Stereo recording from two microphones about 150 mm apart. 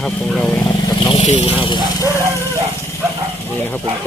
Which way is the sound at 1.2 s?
50° left (ahead or behind).